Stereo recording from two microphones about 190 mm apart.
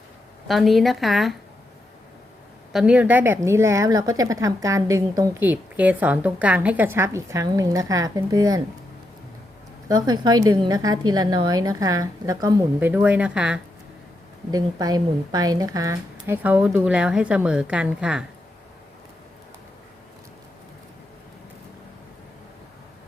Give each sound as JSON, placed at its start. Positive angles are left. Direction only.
{"t": 0.4, "sound": "a woman's voice", "side_deg": 0}
{"t": 2.7, "sound": "a woman's voice", "side_deg": -5}
{"t": 9.9, "sound": "a woman's voice", "side_deg": -20}
{"t": 12.9, "sound": "a woman's voice", "side_deg": -5}
{"t": 14.5, "sound": "a woman's voice", "side_deg": -20}